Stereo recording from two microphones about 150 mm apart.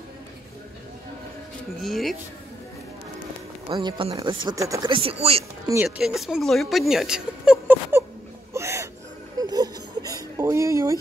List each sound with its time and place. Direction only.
1.8 s speech: centre (ahead or behind)
3.6 s speech: 30° right (ahead or behind)
4.9 s speech: 40° right (ahead or behind)
5.9 s speech: 5° right (ahead or behind)
8.5 s gasp: 20° right (ahead or behind)
9.4 s a sound: 25° right (ahead or behind)